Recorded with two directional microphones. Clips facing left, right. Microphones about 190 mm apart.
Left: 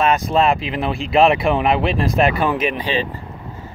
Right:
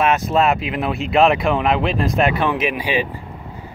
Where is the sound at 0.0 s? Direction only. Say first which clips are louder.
Even; 5° right (ahead or behind).